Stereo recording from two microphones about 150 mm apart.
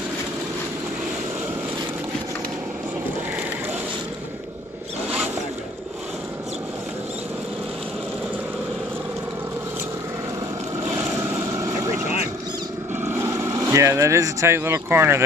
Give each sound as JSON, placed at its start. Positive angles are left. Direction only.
{"t": 13.7, "sound": "speech", "side_deg": -20}